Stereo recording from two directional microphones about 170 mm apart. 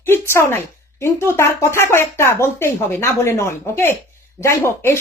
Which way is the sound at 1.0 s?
15° left (ahead or behind).